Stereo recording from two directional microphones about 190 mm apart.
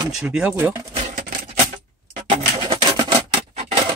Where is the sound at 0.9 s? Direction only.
40° right (ahead or behind).